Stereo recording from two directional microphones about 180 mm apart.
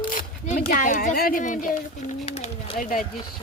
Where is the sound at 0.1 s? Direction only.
45° left (ahead or behind).